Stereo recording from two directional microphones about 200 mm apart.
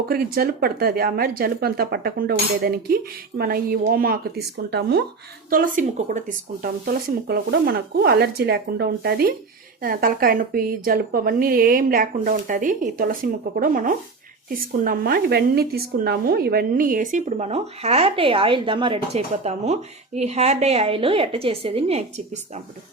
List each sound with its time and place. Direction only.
0.1 s a woman's voice: 50° right (ahead or behind)
5.5 s a woman's voice: 45° right (ahead or behind)